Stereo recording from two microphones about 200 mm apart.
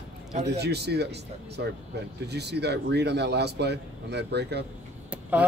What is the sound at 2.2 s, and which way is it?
Speech, 55° right (ahead or behind).